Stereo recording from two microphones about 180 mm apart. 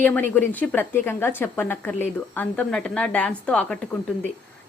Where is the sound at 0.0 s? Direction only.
10° left (ahead or behind).